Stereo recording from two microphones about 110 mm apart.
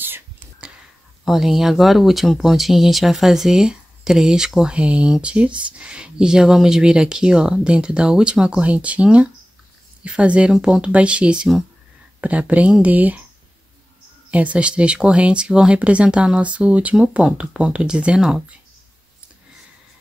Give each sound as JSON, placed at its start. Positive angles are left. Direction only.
{"t": 0.0, "sound": "whispering", "side_deg": -20}
{"t": 1.2, "sound": "speech", "side_deg": 0}
{"t": 14.3, "sound": "speech", "side_deg": -10}